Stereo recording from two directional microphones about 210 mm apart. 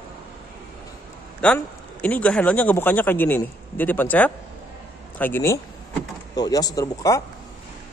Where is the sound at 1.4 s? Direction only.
5° left (ahead or behind).